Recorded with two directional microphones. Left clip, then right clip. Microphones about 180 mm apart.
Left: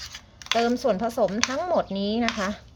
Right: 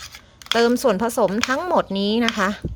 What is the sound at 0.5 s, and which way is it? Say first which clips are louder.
Speech: right 5 dB; 40° right (ahead or behind).